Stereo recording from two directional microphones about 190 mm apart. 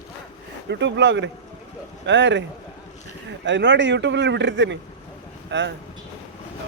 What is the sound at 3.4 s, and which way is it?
Speech, 70° right (ahead or behind).